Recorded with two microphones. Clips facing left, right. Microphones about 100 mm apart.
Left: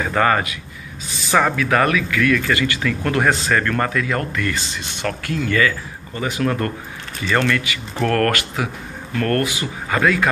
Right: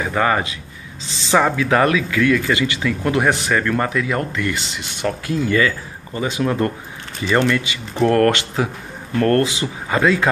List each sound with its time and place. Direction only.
0.0 s speech: 15° right (ahead or behind)
1.0 s speech: 25° right (ahead or behind)